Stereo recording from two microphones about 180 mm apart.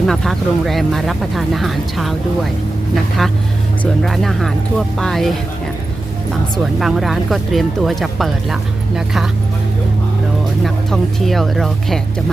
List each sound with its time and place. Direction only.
0.1 s speech: centre (ahead or behind)
6.7 s speech: centre (ahead or behind)
10.6 s speech: centre (ahead or behind)